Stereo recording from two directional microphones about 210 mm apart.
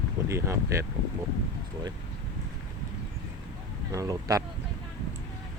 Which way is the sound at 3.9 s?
15° right (ahead or behind).